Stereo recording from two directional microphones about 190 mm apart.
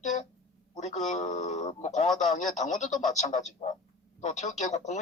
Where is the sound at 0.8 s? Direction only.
40° left (ahead or behind).